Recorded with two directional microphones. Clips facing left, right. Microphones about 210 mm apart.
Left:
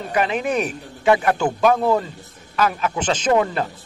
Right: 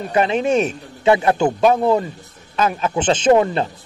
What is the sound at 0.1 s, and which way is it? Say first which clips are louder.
A man's voice: right 4 dB; 25° right (ahead or behind).